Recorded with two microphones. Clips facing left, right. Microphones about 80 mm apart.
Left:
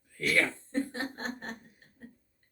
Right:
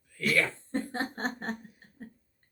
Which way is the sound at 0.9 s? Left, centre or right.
Right.